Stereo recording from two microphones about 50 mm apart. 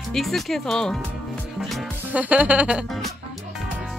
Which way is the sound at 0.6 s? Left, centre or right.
Centre.